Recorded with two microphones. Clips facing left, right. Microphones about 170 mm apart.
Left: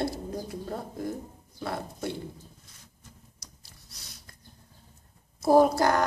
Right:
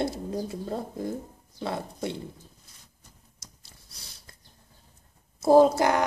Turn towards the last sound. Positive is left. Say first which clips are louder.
# right 2 dB
turn(degrees=-20)  # may be behind; listen again after turning